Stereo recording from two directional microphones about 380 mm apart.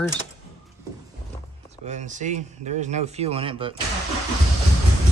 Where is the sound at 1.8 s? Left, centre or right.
Centre.